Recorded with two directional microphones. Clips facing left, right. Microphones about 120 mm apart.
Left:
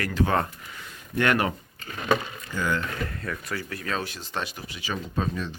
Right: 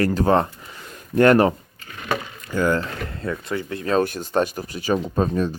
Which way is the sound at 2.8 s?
25° right (ahead or behind).